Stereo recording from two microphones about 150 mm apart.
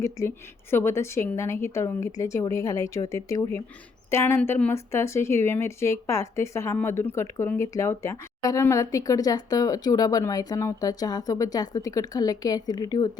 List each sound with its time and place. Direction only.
0.0 s a woman's voice: 20° left (ahead or behind)